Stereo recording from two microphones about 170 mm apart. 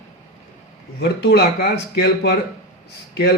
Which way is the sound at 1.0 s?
75° left (ahead or behind).